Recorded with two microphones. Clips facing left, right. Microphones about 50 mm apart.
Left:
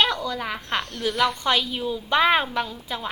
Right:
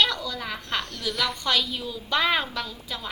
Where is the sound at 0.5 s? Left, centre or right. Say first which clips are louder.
Left 3 dB; centre.